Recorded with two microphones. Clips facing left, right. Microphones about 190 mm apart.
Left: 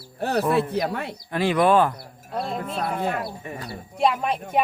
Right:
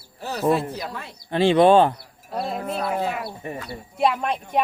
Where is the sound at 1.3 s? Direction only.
25° right (ahead or behind).